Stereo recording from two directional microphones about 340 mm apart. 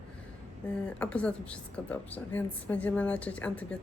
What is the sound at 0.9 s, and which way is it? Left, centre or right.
A woman's voice, centre.